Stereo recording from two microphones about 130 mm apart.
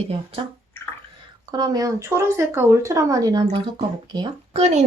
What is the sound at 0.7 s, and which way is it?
Bathtub, 15° left (ahead or behind).